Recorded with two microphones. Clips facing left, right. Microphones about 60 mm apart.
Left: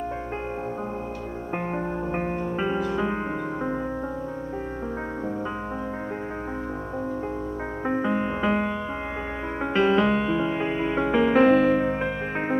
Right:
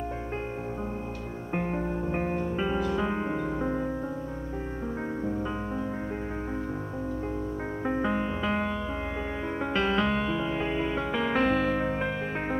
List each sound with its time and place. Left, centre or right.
1.7 s music: left
8.2 s music: centre
9.8 s music: centre